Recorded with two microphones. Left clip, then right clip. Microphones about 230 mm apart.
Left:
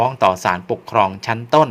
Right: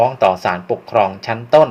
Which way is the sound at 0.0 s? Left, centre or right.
Left.